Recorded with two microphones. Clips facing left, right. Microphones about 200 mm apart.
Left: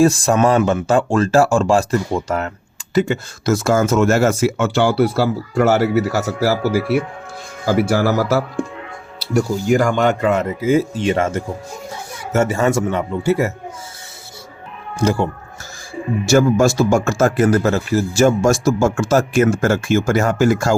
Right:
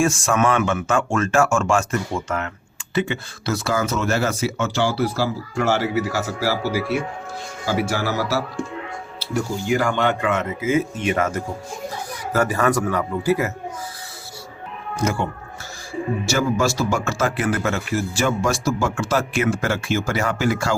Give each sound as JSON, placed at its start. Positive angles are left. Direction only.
{"t": 0.0, "sound": "speech", "side_deg": 35}
{"t": 7.6, "sound": "speech", "side_deg": 50}
{"t": 9.6, "sound": "a man's voice", "side_deg": 45}
{"t": 14.9, "sound": "speech", "side_deg": 35}
{"t": 16.2, "sound": "speech", "side_deg": 50}